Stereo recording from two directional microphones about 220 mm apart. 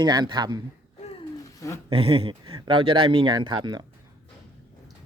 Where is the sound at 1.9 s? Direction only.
25° right (ahead or behind).